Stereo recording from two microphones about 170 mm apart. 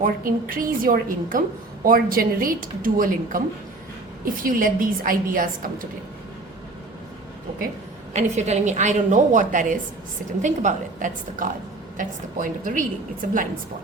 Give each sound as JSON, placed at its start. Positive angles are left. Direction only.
{"t": 0.0, "sound": "a woman's voice", "side_deg": -55}
{"t": 4.4, "sound": "a woman's voice", "side_deg": -55}
{"t": 8.1, "sound": "a woman's voice", "side_deg": -40}